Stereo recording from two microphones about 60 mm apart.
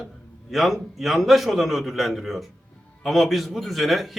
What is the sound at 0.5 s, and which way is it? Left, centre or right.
Speech, centre.